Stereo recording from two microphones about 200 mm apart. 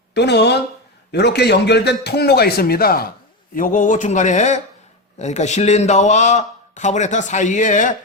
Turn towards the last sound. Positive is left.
turn(degrees=40)  # may be behind; listen again after turning